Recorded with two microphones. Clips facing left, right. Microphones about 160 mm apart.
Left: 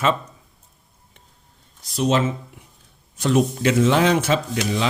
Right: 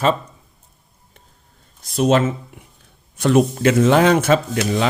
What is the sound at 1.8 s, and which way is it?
Speech, 55° right (ahead or behind).